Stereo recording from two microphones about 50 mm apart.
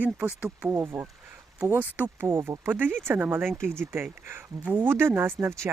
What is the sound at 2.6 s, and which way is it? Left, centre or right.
Speech, right.